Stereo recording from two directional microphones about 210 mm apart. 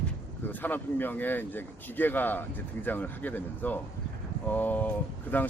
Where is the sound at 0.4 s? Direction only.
10° left (ahead or behind).